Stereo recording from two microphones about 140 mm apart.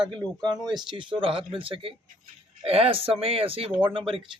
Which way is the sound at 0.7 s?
35° right (ahead or behind).